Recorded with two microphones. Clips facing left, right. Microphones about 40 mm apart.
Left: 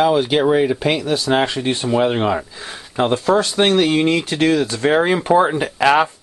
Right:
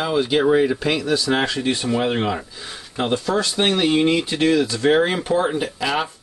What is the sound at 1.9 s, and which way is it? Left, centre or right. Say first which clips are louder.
Speech: left 6 dB; centre.